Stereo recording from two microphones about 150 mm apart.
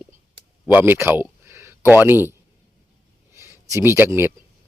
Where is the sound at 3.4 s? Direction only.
20° right (ahead or behind).